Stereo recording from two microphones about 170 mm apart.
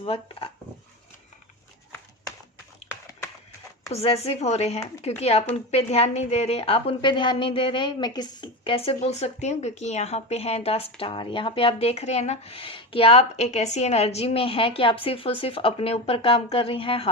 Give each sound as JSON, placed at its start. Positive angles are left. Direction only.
{"t": 0.0, "sound": "a woman's voice", "side_deg": 35}
{"t": 3.9, "sound": "a woman's voice", "side_deg": 35}